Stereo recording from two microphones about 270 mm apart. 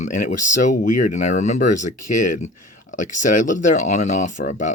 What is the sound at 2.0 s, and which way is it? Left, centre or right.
Speech, left.